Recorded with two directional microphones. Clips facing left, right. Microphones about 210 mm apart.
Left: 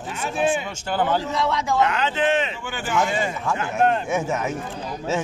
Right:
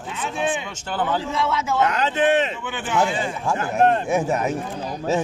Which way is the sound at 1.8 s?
40° right (ahead or behind).